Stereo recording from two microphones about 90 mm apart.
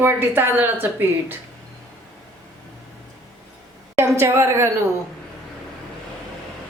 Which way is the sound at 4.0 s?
30° right (ahead or behind).